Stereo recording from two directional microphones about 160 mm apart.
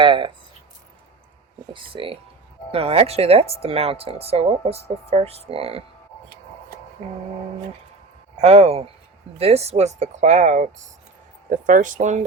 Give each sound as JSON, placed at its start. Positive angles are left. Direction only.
{"t": 0.0, "sound": "speech", "side_deg": -30}
{"t": 1.7, "sound": "speech", "side_deg": -35}
{"t": 7.0, "sound": "speech", "side_deg": -40}
{"t": 8.4, "sound": "speech", "side_deg": -40}